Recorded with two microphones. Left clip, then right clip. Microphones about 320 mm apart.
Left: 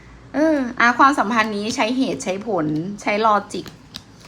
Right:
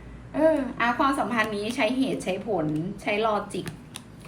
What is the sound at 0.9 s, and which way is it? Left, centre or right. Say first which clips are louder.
A woman's voice: left 8 dB; centre.